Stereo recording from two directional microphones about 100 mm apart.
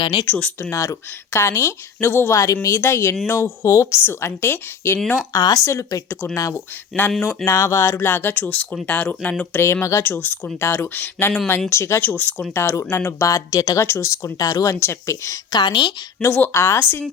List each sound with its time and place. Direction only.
0.0 s a woman's voice: 50° left (ahead or behind)
0.3 s speech: 15° left (ahead or behind)
0.6 s speech: 30° left (ahead or behind)
5.3 s speech: 40° left (ahead or behind)
5.6 s speech: 30° left (ahead or behind)
8.0 s speech: 20° left (ahead or behind)
15.5 s a woman's voice: 50° left (ahead or behind)
16.2 s speech: 25° left (ahead or behind)